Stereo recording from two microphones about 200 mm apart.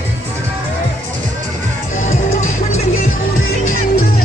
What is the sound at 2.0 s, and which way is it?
Music, 35° left (ahead or behind).